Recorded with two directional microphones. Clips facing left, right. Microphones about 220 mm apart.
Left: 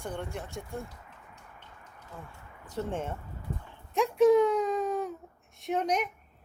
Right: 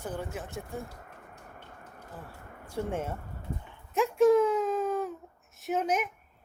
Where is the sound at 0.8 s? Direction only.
50° right (ahead or behind).